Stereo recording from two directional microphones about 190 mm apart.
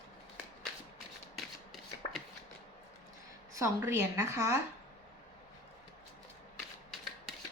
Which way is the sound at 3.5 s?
15° right (ahead or behind).